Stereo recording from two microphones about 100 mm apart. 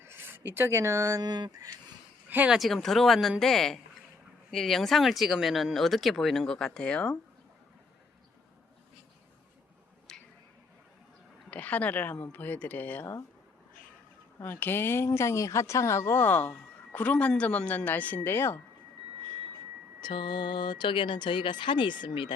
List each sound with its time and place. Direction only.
0.0 s speech: 25° right (ahead or behind); by 1.7 s 40° right (ahead or behind)
2.5 s speech: centre (ahead or behind)
10.1 s tick-tock: 5° left (ahead or behind)
11.5 s speech: 15° left (ahead or behind)
14.3 s a woman's voice: 20° left (ahead or behind)
20.0 s speech: 55° left (ahead or behind)